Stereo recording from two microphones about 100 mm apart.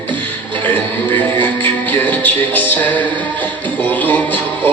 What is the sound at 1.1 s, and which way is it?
Music, 20° left (ahead or behind).